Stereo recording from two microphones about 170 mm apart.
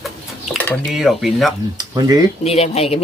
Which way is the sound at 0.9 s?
Centre (ahead or behind).